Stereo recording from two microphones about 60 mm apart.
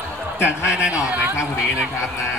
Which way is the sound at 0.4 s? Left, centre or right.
Centre.